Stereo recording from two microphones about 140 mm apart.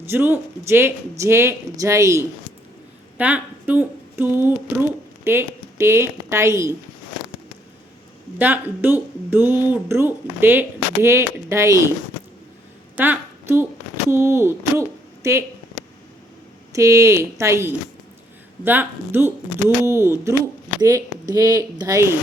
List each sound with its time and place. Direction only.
0.0 s speech: 15° right (ahead or behind)
3.2 s a sound: 10° right (ahead or behind)
4.4 s speech: 15° right (ahead or behind)
8.4 s speech: 15° right (ahead or behind)
13.0 s a woman's voice: 15° right (ahead or behind)
14.1 s a sound: 15° right (ahead or behind)
16.7 s speech: 20° right (ahead or behind)